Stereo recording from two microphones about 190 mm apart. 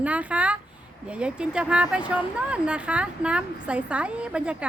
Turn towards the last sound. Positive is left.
turn(degrees=-5)  # may be behind; listen again after turning